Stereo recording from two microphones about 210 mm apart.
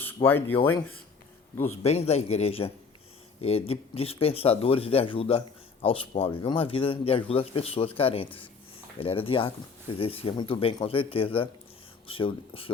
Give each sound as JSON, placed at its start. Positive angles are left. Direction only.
{"t": 0.0, "sound": "speech", "side_deg": 10}
{"t": 1.8, "sound": "a man's voice", "side_deg": 30}